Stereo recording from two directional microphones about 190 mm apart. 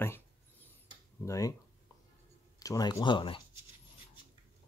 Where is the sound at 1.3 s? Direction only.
20° left (ahead or behind).